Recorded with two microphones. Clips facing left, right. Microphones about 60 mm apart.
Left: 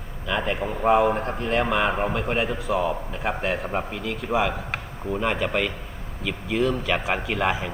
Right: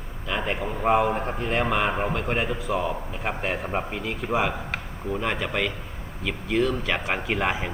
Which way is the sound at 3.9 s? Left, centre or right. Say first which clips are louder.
Even; centre.